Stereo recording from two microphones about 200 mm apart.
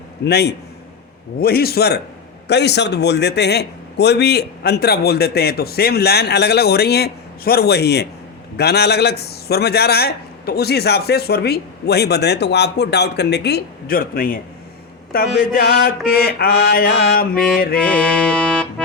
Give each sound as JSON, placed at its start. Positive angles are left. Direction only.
{"t": 0.3, "sound": "a man's voice", "side_deg": 55}
{"t": 17.7, "sound": "music", "side_deg": 5}